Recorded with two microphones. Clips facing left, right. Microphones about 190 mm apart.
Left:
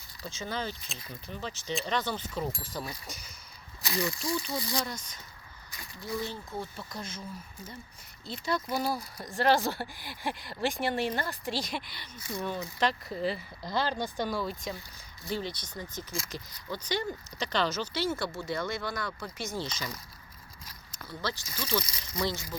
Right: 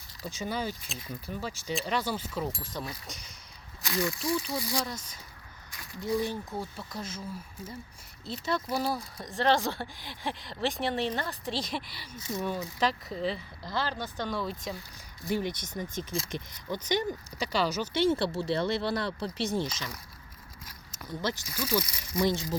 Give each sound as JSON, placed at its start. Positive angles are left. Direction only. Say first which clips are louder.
{"t": 0.3, "sound": "speech", "louder": "right 2 dB", "side_deg": -15}
{"t": 6.7, "sound": "speech", "louder": "right 2 dB", "side_deg": -5}
{"t": 13.6, "sound": "speech", "louder": "left 2 dB", "side_deg": 15}
{"t": 15.3, "sound": "speech", "louder": "right 4 dB", "side_deg": -15}
{"t": 21.0, "sound": "speech", "louder": "right 3 dB", "side_deg": -20}